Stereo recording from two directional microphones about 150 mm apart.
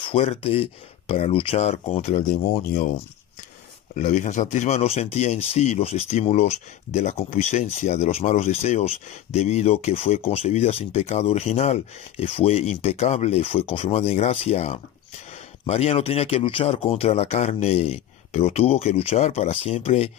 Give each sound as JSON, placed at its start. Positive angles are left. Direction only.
{"t": 0.0, "sound": "speech", "side_deg": 45}
{"t": 3.9, "sound": "speech", "side_deg": 55}